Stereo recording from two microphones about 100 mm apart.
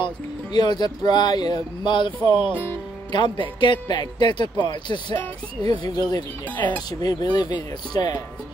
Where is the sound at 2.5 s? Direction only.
20° left (ahead or behind).